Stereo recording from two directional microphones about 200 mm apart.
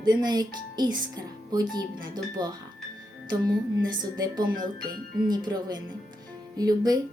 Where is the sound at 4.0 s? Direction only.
20° right (ahead or behind).